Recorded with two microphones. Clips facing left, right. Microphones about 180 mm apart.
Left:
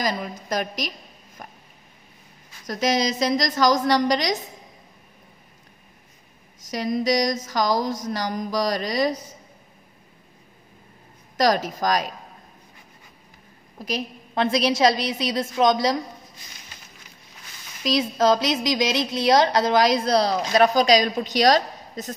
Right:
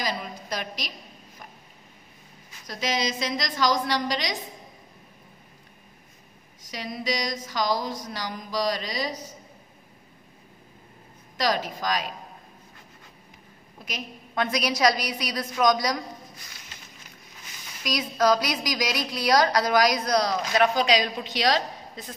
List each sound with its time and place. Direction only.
0.0 s speech: 45° left (ahead or behind)
1.4 s a sound: 50° left (ahead or behind)
2.6 s speech: 45° left (ahead or behind)
6.6 s speech: 45° left (ahead or behind)
11.3 s speech: 45° left (ahead or behind)
13.8 s a woman's voice: 30° left (ahead or behind)
17.8 s a woman's voice: 25° left (ahead or behind); by 22.1 s 40° left (ahead or behind)